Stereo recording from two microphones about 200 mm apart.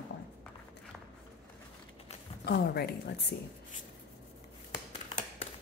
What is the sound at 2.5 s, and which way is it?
Speech, 55° left (ahead or behind).